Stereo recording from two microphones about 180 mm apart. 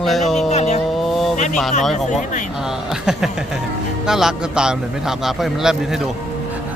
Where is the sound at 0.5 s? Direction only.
35° left (ahead or behind).